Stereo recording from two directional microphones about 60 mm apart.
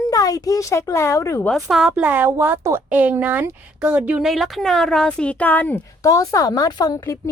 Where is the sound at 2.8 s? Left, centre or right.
Right.